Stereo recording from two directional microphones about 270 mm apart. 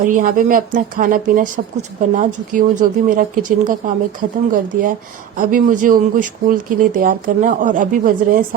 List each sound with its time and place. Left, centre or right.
0.0 s speech: right